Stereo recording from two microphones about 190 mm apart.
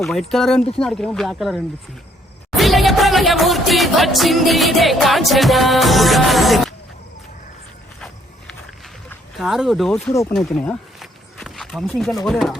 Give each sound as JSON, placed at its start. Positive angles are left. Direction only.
{"t": 0.0, "sound": "music", "side_deg": 0}
{"t": 9.4, "sound": "music", "side_deg": 0}
{"t": 10.1, "sound": "speech", "side_deg": 15}
{"t": 10.3, "sound": "speech", "side_deg": 5}